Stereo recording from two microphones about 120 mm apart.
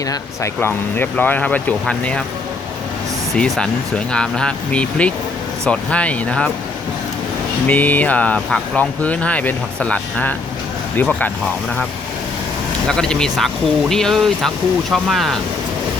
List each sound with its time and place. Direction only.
0.1 s speech: 20° left (ahead or behind)
3.3 s speech: 5° left (ahead or behind)
7.7 s speech: 15° left (ahead or behind)
12.9 s speech: 5° left (ahead or behind)